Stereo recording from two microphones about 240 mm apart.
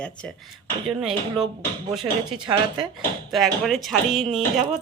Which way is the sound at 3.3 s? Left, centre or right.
Centre.